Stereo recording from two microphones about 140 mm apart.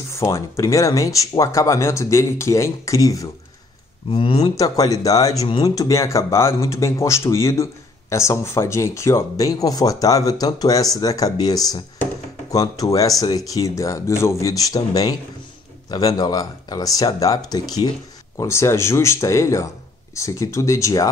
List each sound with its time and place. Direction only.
0.1 s speech: 20° left (ahead or behind)
4.1 s speech: 40° left (ahead or behind)
4.6 s speech: 25° left (ahead or behind)